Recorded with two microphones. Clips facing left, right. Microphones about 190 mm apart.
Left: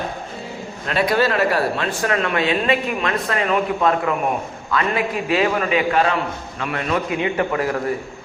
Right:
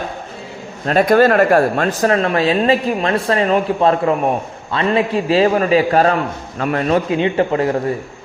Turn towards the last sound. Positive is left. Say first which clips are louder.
# right 5 dB
turn(degrees=-25)  # may be behind; listen again after turning